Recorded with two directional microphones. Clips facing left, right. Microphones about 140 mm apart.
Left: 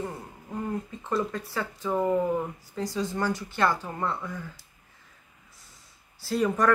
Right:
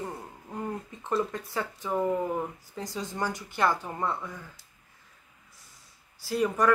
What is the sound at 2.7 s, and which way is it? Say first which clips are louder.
Speech: left 5 dB; 20° right (ahead or behind).